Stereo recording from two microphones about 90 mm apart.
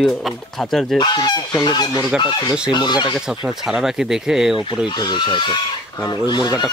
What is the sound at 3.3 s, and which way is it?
Speech, 5° right (ahead or behind).